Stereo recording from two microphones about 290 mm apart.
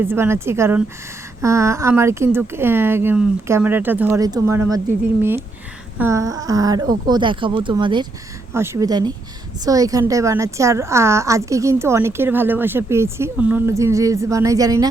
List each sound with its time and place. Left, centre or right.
0.0 s a woman's voice: centre
6.0 s a woman's voice: centre